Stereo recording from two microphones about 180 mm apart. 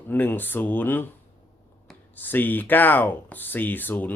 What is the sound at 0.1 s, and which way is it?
Speech, 10° left (ahead or behind).